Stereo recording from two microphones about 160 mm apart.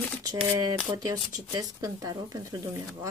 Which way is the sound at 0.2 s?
20° right (ahead or behind).